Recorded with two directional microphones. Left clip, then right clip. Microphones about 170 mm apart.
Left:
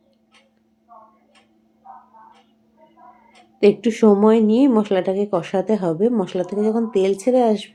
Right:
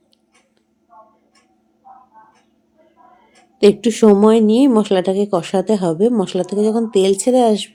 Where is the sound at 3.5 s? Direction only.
35° right (ahead or behind).